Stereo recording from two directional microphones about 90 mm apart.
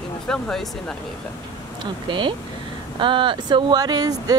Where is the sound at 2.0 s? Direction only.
60° right (ahead or behind).